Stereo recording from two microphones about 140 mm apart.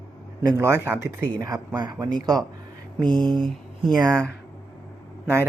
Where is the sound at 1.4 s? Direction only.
25° right (ahead or behind).